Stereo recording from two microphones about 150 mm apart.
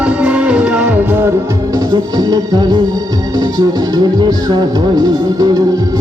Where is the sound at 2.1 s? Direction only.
25° right (ahead or behind).